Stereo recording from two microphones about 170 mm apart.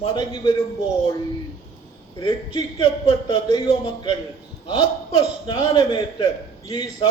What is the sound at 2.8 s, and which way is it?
Speech, 35° left (ahead or behind).